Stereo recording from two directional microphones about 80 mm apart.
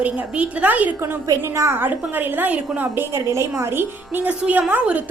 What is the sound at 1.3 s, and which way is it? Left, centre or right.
Speech, right.